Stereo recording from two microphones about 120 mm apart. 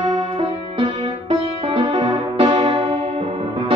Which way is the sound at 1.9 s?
55° right (ahead or behind).